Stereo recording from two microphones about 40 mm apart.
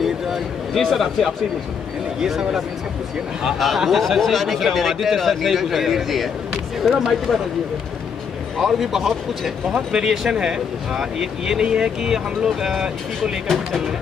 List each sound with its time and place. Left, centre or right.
0.7 s a man's voice: centre
3.5 s a man's voice: centre
8.5 s a man's voice: centre
9.7 s speech: centre